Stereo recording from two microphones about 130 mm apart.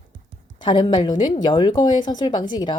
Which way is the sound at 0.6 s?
40° left (ahead or behind).